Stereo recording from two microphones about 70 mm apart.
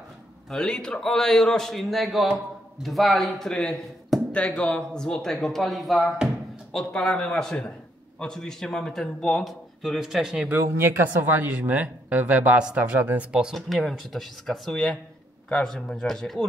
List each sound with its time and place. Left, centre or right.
0.5 s a man's voice: centre
10.6 s speech: right
11.1 s speech: right
13.6 s a man's voice: centre